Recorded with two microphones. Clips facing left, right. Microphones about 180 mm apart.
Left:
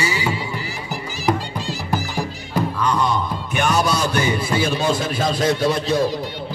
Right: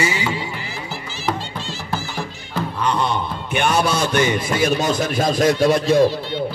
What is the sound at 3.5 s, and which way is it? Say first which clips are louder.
Music: right 1 dB; 40° left (ahead or behind).